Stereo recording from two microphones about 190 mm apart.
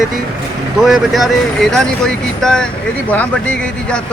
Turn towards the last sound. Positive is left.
turn(degrees=5)  # may be behind; listen again after turning